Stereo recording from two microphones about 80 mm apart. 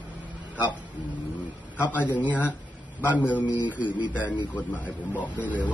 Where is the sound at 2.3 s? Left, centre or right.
Left.